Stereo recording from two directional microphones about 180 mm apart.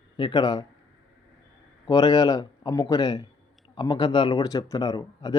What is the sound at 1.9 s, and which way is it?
Speech, 20° left (ahead or behind).